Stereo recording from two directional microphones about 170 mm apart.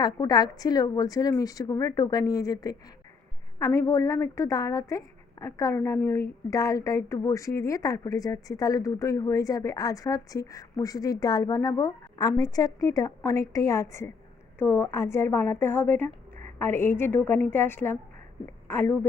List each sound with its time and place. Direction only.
0.0 s a woman's voice: 25° left (ahead or behind)